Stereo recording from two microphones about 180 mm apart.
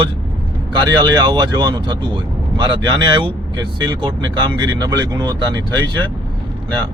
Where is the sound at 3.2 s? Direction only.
25° right (ahead or behind).